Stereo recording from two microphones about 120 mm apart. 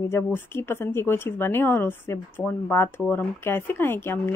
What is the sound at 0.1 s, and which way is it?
Speech, 20° left (ahead or behind).